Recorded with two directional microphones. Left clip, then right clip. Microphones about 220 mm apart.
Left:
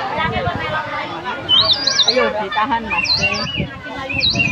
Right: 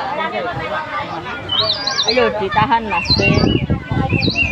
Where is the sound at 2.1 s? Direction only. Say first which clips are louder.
Right 1 dB; 50° right (ahead or behind).